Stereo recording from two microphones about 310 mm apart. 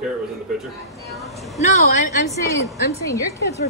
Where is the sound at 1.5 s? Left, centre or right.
Left.